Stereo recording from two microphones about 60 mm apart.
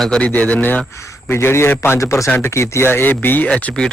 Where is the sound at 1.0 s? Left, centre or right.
Left.